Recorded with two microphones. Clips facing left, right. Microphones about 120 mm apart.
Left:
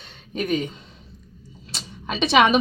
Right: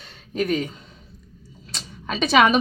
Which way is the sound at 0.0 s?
Centre (ahead or behind).